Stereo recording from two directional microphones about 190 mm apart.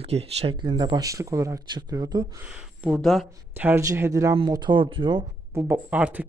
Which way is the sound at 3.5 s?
10° right (ahead or behind).